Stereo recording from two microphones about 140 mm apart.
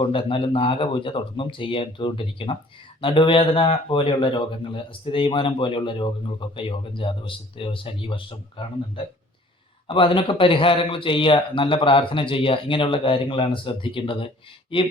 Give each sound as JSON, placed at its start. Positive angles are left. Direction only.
{"t": 0.0, "sound": "a man's voice", "side_deg": 40}